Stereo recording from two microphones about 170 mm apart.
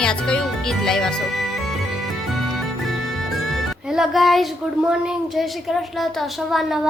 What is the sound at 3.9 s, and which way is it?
Speech, centre (ahead or behind).